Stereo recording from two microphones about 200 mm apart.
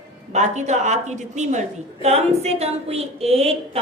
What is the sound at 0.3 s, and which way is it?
A woman's voice, 35° right (ahead or behind).